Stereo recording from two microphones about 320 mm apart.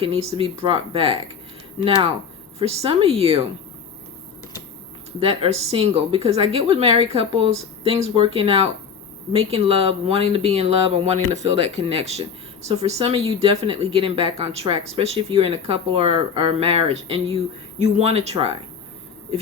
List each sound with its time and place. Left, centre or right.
0.0 s speech: centre
2.6 s speech: centre
5.2 s speech: centre